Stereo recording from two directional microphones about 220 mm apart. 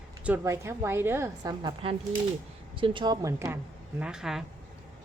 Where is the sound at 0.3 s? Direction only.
10° right (ahead or behind).